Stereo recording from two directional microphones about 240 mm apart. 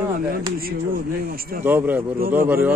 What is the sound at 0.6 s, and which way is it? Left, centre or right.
Speech, right.